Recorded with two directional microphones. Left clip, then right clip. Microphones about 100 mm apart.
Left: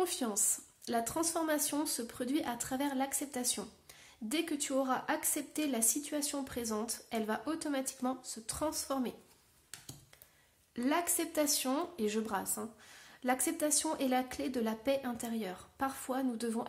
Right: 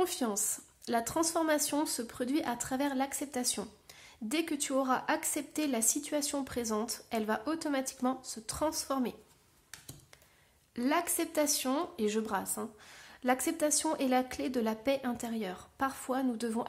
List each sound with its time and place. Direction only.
0.0 s speech: 35° right (ahead or behind)
10.7 s a woman's voice: 25° right (ahead or behind)